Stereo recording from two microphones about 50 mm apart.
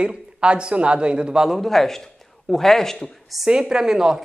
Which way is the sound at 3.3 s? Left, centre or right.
Centre.